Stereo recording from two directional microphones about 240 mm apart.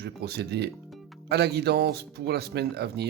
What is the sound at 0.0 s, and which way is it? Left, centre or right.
Speech, right.